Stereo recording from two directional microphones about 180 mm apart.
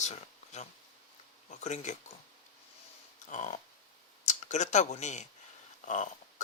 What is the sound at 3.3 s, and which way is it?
A man's voice, 40° left (ahead or behind).